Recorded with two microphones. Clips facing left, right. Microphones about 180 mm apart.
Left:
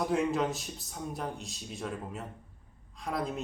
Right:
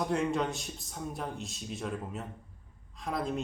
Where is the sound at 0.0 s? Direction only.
Centre (ahead or behind).